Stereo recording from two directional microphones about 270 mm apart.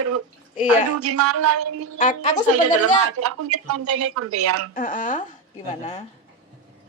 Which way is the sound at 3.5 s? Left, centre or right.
Right.